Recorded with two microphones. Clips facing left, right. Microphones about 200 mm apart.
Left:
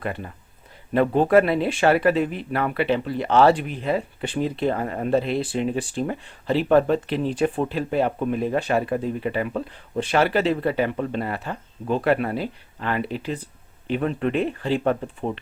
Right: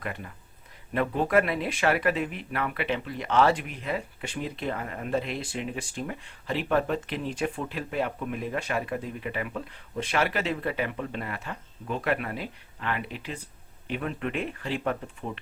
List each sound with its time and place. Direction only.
0.0 s speech: 30° left (ahead or behind)